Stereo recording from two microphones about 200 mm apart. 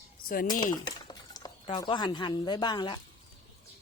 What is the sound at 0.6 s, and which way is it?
Speech, 20° left (ahead or behind).